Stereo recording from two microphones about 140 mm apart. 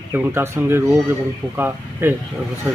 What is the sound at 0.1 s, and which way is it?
A man's voice, 20° right (ahead or behind).